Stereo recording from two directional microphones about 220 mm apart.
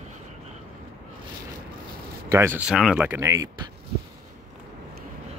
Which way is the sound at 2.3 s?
10° right (ahead or behind).